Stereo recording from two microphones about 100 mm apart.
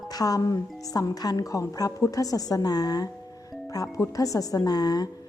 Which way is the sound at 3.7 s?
30° left (ahead or behind).